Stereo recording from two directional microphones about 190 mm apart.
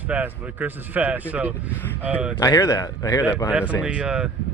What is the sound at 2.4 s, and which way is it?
Speech, 20° left (ahead or behind).